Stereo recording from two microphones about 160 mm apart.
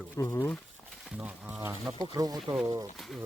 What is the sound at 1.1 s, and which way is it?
Speech, 10° right (ahead or behind).